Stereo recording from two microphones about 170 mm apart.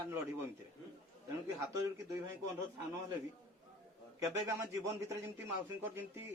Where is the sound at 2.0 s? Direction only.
20° right (ahead or behind).